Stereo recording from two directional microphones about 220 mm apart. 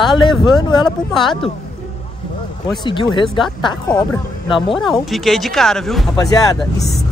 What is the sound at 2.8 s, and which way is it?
Speech, 20° left (ahead or behind).